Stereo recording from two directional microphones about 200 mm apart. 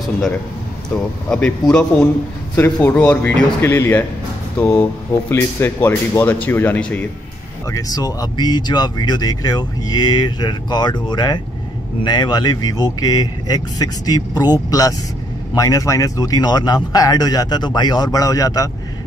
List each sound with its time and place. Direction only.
0.8 s speech: 5° left (ahead or behind)
7.7 s speech: 20° left (ahead or behind)